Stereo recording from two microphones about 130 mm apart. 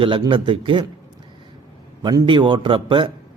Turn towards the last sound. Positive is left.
turn(degrees=-40)  # may be behind; listen again after turning